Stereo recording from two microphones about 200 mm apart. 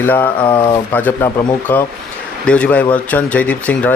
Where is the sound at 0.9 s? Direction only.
10° left (ahead or behind).